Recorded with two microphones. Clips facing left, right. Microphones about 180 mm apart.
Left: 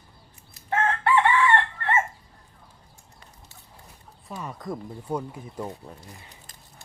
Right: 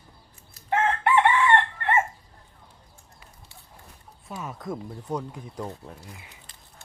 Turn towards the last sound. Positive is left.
turn(degrees=-10)  # may be behind; listen again after turning